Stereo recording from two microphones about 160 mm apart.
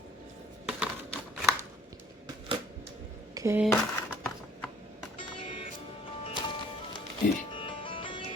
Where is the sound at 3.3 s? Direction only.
20° right (ahead or behind).